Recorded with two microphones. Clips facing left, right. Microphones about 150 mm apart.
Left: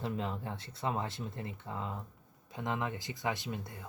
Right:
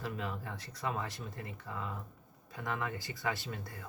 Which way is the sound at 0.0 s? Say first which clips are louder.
Left 3 dB; 25° left (ahead or behind).